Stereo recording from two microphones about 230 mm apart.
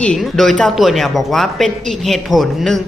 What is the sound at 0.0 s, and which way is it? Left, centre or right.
Speech, centre.